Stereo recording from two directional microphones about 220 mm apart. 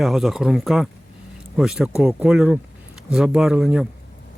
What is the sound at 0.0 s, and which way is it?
Speech, centre (ahead or behind).